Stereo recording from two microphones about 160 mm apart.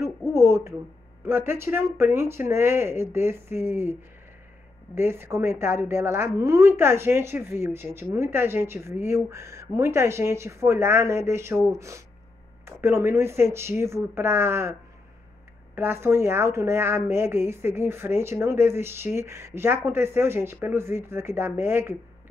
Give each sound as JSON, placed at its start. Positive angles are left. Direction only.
{"t": 0.3, "sound": "a sound", "side_deg": -15}
{"t": 1.2, "sound": "a woman's voice", "side_deg": -15}
{"t": 4.9, "sound": "a woman's voice", "side_deg": -15}
{"t": 12.6, "sound": "a woman's voice", "side_deg": -15}